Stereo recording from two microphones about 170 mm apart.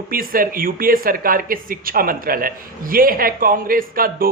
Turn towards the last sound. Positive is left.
turn(degrees=-55)  # may be behind; listen again after turning